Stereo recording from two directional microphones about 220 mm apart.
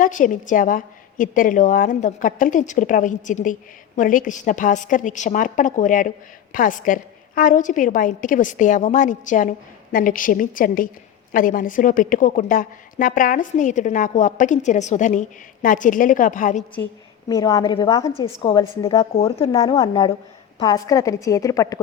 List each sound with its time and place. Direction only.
0.0 s a woman's voice: 35° left (ahead or behind)
17.2 s a woman's voice: 15° left (ahead or behind)
19.1 s a woman's voice: 25° left (ahead or behind)
19.5 s a woman's voice: 15° left (ahead or behind)